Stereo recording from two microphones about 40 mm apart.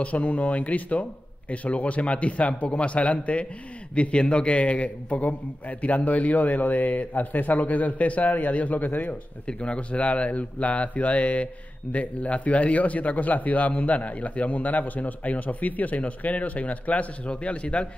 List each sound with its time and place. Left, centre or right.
0.0 s a man's voice: left
9.5 s a man's voice: left